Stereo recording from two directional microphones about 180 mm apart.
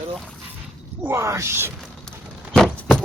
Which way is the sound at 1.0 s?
15° right (ahead or behind).